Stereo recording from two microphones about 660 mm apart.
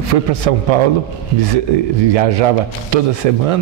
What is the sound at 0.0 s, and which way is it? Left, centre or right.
Speech, right.